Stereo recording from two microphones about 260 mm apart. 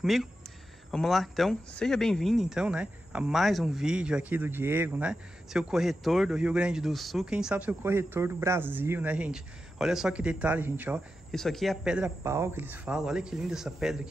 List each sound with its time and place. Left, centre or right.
0.0 s speech: centre